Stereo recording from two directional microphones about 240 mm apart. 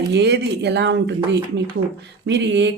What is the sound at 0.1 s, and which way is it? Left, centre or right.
Speech, right.